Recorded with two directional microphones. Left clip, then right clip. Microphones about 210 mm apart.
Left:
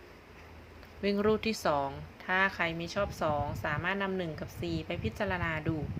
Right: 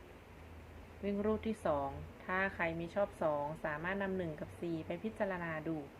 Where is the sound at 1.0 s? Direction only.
35° left (ahead or behind).